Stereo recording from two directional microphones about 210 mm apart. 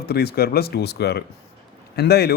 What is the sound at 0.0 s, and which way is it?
A man's voice, 50° left (ahead or behind).